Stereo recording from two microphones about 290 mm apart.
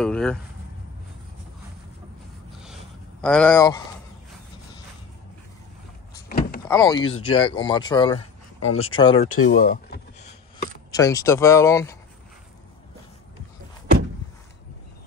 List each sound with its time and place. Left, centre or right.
0.0 s speech: centre
2.6 s a sound: centre
6.2 s vehicle: left
6.6 s speech: centre
9.3 s speech: left
9.6 s speech: left
10.9 s speech: centre